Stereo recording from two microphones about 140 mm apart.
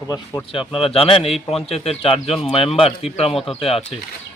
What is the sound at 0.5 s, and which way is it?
A man's voice, 40° left (ahead or behind).